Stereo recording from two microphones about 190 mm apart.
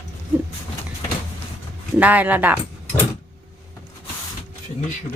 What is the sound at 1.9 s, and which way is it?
Speech, 10° right (ahead or behind).